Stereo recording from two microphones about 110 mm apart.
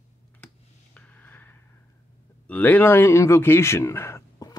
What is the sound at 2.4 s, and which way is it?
Speech, 15° left (ahead or behind).